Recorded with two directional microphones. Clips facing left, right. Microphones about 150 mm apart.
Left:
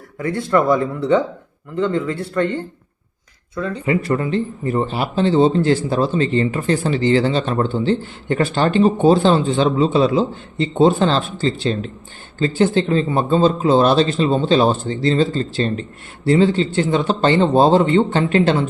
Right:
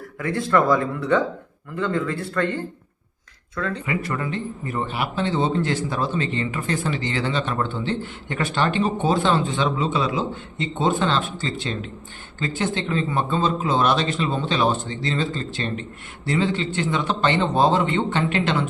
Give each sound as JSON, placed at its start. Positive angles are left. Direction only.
{"t": 0.2, "sound": "speech", "side_deg": 25}
{"t": 3.8, "sound": "speech", "side_deg": 30}